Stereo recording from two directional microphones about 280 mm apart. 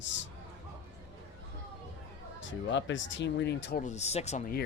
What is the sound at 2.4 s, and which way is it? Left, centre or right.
Speech, left.